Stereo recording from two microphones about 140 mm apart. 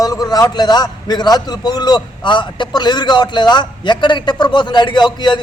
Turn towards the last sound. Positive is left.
turn(degrees=30)  # may be behind; listen again after turning